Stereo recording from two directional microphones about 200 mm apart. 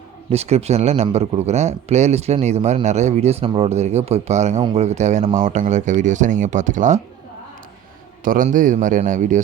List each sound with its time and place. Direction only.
0.3 s a man's voice: 30° right (ahead or behind)
8.2 s a man's voice: 45° right (ahead or behind)